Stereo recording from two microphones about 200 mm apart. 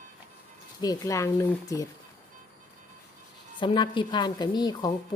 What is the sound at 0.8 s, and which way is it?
Speech, 15° left (ahead or behind).